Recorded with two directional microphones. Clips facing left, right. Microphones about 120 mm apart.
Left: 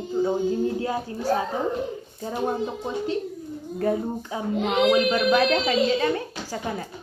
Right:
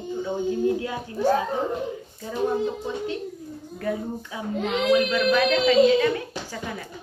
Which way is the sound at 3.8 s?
35° left (ahead or behind).